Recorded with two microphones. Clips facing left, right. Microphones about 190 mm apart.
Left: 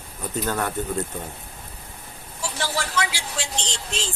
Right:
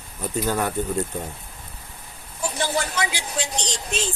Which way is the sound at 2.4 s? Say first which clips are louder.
Right 3 dB; 20° right (ahead or behind).